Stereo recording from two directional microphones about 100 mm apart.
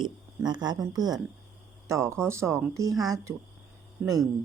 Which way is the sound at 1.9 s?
30° right (ahead or behind).